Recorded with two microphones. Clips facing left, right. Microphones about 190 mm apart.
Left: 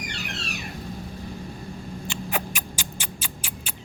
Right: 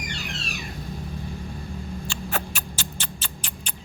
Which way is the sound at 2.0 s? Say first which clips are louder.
Left 3 dB; 15° left (ahead or behind).